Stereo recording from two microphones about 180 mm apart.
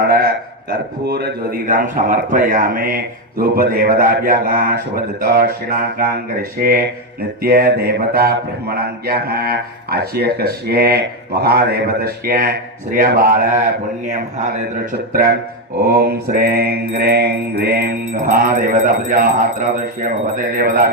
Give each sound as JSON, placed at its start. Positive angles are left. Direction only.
{"t": 0.0, "sound": "a man's voice", "side_deg": -60}
{"t": 1.6, "sound": "speech", "side_deg": -45}
{"t": 5.2, "sound": "mantra", "side_deg": -55}
{"t": 6.6, "sound": "mantra", "side_deg": -55}
{"t": 12.9, "sound": "speech", "side_deg": -50}
{"t": 14.9, "sound": "mantra", "side_deg": -60}
{"t": 17.6, "sound": "speech", "side_deg": -60}